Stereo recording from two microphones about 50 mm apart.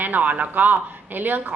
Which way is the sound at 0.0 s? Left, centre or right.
Right.